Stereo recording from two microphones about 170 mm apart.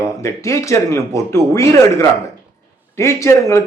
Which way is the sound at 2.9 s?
15° left (ahead or behind).